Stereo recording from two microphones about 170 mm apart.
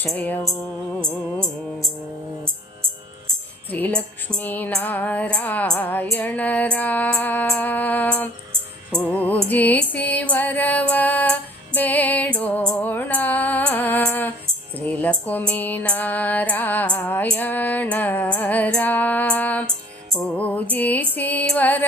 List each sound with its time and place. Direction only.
0.0 s music: 10° left (ahead or behind)
0.9 s music: 15° right (ahead or behind)
3.7 s music: 10° left (ahead or behind)
14.8 s tambourine: 10° left (ahead or behind)
15.3 s music: 10° left (ahead or behind)